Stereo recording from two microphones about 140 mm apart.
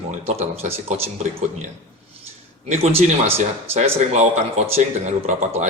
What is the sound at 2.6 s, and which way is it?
A man's voice, 45° right (ahead or behind).